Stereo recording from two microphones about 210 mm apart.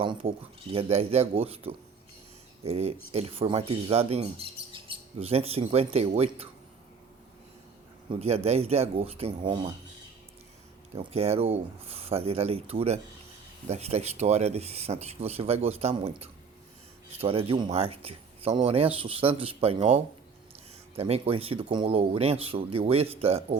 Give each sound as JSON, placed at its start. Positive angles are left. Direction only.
{"t": 0.0, "sound": "speech", "side_deg": -25}
{"t": 8.1, "sound": "speech", "side_deg": -30}
{"t": 10.9, "sound": "speech", "side_deg": -30}